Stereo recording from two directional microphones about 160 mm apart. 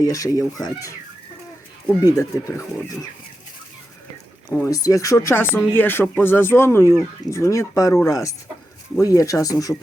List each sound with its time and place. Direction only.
0.0 s speech: 20° left (ahead or behind)
2.1 s speech: 20° left (ahead or behind)
4.4 s speech: 20° left (ahead or behind)